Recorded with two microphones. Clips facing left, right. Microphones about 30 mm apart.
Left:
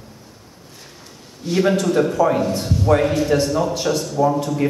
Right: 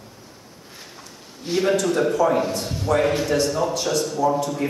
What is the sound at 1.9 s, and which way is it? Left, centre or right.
Speech, centre.